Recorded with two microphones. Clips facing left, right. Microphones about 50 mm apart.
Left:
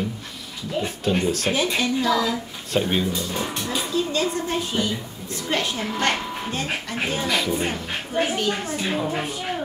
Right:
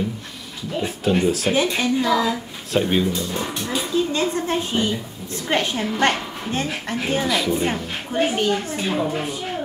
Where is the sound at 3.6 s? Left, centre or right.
Centre.